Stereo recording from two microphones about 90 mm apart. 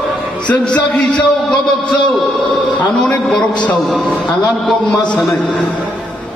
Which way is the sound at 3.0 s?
10° left (ahead or behind).